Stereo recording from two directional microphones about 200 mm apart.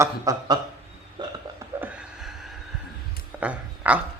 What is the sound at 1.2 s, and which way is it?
Burping, 25° right (ahead or behind).